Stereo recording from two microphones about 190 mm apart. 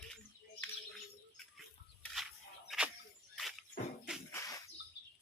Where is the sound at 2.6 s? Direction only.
5° right (ahead or behind).